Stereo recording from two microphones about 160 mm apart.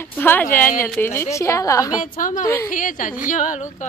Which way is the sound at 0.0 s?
15° left (ahead or behind).